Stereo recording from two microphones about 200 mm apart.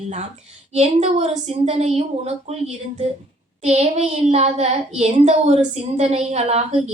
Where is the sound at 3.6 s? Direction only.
35° right (ahead or behind).